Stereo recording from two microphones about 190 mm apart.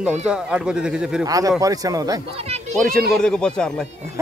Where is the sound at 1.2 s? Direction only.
20° right (ahead or behind).